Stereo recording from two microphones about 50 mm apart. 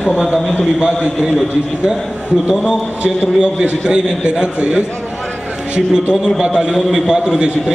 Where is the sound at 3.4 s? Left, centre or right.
Centre.